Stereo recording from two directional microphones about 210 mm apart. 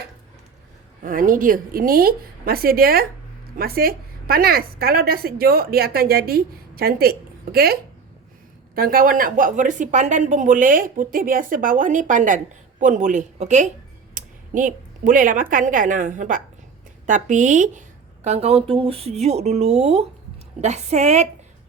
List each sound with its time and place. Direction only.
1.0 s a woman's voice: 40° right (ahead or behind)